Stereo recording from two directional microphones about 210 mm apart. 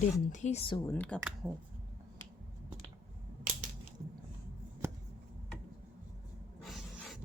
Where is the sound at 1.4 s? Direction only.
10° right (ahead or behind).